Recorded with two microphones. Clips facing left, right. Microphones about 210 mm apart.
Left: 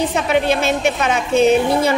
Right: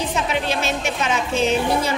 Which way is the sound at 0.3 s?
55° left (ahead or behind).